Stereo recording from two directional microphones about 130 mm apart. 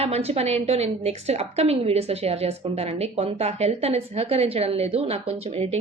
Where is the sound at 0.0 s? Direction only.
50° right (ahead or behind).